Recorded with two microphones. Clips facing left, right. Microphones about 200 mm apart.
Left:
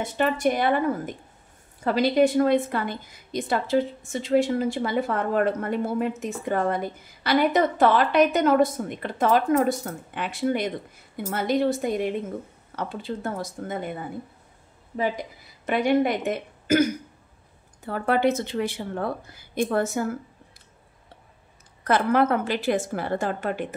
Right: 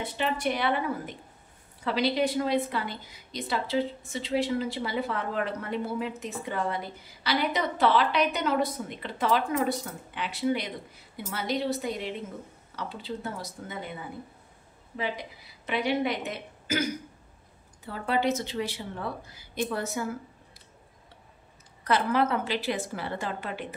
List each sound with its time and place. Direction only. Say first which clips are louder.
0.0 s a woman's voice: left 6 dB; 45° left (ahead or behind)
17.8 s a woman's voice: left 5 dB; 55° left (ahead or behind)
21.8 s a woman's voice: left 5 dB; 50° left (ahead or behind)